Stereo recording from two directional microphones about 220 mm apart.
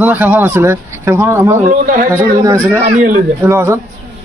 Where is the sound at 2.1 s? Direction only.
15° right (ahead or behind).